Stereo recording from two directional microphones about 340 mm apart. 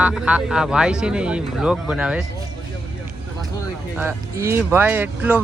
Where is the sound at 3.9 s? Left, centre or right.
Centre.